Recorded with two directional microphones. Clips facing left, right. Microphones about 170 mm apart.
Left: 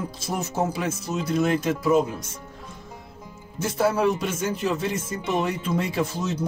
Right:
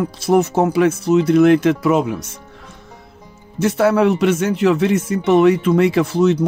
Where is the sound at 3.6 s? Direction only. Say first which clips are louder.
Right 8 dB; 75° right (ahead or behind).